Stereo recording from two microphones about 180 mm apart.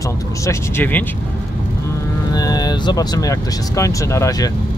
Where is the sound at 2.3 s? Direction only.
20° left (ahead or behind).